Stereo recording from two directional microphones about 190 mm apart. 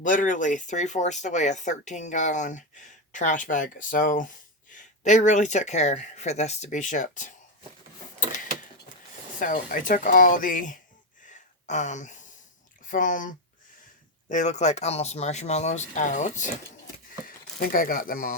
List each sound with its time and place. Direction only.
0.0 s speech: 45° left (ahead or behind)
9.4 s speech: 45° left (ahead or behind)
11.3 s a sound: 40° left (ahead or behind)
12.8 s speech: 45° left (ahead or behind)